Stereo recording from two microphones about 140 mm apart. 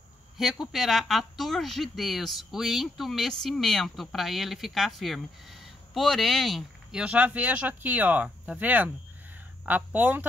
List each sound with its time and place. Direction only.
0.4 s speech: centre (ahead or behind)